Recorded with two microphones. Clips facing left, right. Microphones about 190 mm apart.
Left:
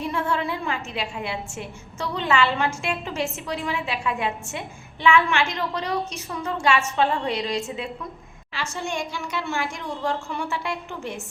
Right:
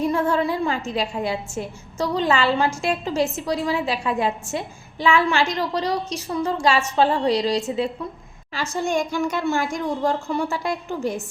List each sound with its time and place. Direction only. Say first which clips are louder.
0.0 s a woman's voice: right 5 dB; 40° right (ahead or behind)